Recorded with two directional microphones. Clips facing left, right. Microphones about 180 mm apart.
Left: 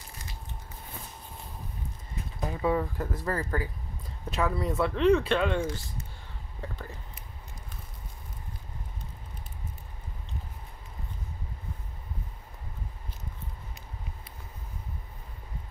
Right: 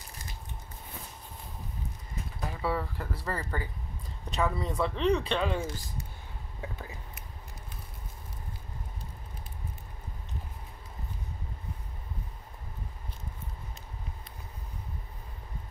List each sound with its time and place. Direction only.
2.4 s speech: 15° left (ahead or behind); by 6.0 s centre (ahead or behind)
6.6 s whispering: 5° right (ahead or behind)